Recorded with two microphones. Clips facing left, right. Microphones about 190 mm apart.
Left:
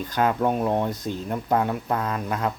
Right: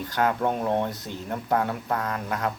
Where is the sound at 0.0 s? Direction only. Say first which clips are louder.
Left 2 dB; 20° left (ahead or behind).